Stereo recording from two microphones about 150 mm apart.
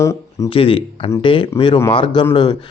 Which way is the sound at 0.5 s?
35° left (ahead or behind).